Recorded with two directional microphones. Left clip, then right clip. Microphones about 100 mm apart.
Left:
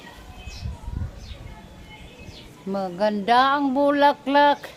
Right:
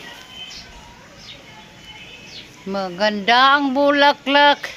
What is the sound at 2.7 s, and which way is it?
Speech, 10° right (ahead or behind).